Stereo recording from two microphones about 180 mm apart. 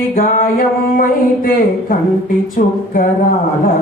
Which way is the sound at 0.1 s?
50° left (ahead or behind).